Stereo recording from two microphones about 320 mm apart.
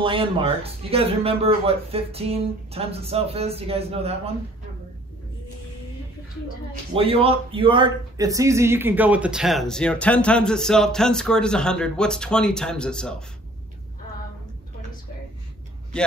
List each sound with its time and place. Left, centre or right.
0.0 s speech: centre
6.7 s speech: centre